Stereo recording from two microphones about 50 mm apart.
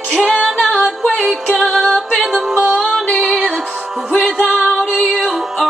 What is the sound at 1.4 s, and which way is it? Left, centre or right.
Music, centre.